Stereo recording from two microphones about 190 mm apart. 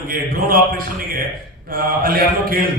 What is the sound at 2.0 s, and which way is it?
Speech, 50° right (ahead or behind).